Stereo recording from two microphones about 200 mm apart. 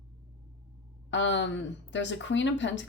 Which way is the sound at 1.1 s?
65° left (ahead or behind).